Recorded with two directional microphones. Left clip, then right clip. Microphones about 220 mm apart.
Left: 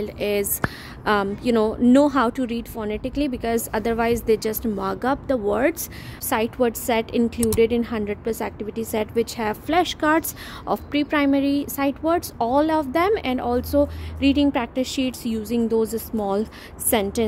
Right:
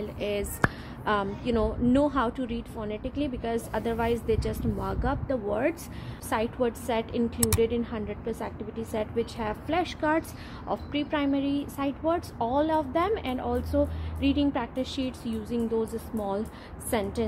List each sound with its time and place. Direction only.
0.0 s a woman's voice: 45° left (ahead or behind)
7.3 s speech: centre (ahead or behind)
7.6 s a woman's voice: 55° left (ahead or behind)